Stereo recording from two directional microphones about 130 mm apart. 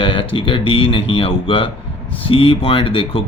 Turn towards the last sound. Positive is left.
turn(degrees=45)  # may be behind; listen again after turning